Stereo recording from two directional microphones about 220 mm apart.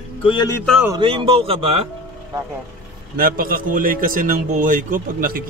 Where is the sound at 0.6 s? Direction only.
Centre (ahead or behind).